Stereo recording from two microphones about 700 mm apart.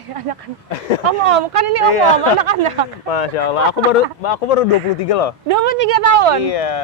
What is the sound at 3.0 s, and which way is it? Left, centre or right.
Speech, left.